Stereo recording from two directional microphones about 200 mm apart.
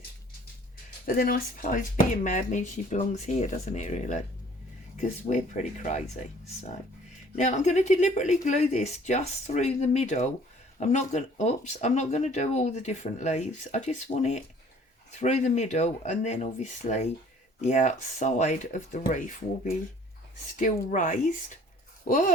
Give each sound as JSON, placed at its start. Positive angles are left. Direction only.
{"t": 1.0, "sound": "speech", "side_deg": 45}
{"t": 7.3, "sound": "speech", "side_deg": 35}
{"t": 20.6, "sound": "speech", "side_deg": 40}